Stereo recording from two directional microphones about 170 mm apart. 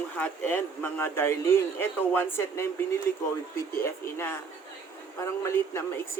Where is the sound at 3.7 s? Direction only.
15° left (ahead or behind).